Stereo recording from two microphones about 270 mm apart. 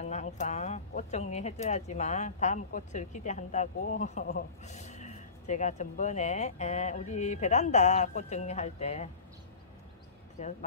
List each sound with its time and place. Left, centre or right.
0.0 s speech: left